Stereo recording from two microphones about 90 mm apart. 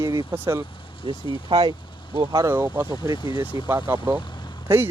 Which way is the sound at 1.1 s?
55° right (ahead or behind).